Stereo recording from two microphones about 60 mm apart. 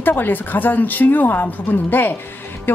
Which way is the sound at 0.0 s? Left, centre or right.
Left.